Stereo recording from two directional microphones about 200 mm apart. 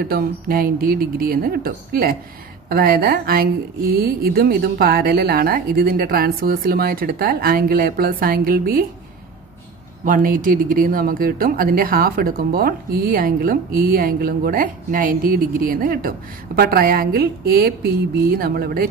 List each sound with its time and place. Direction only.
0.0 s speech: 50° right (ahead or behind)
10.0 s speech: 45° right (ahead or behind)